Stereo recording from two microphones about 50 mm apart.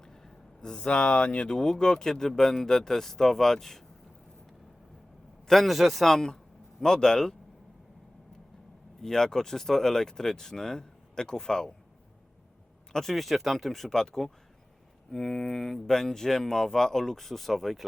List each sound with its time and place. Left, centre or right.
0.0 s speech: centre
5.5 s speech: centre
9.0 s speech: centre
12.9 s speech: centre